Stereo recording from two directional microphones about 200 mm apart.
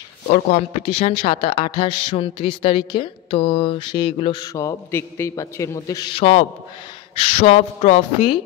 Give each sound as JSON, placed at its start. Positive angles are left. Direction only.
{"t": 0.8, "sound": "speech", "side_deg": 30}